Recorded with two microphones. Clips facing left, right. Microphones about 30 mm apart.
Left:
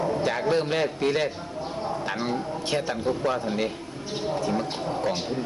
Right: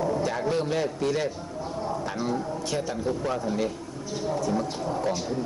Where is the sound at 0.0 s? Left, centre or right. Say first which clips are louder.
Left 1 dB; left.